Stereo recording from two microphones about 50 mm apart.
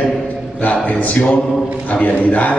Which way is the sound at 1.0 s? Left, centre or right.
Left.